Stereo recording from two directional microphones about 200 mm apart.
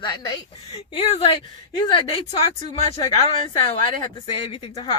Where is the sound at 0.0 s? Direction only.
20° left (ahead or behind).